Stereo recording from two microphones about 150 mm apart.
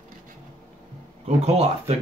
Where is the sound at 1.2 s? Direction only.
45° right (ahead or behind).